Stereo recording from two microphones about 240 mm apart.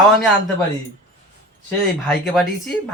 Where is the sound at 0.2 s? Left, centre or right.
Centre.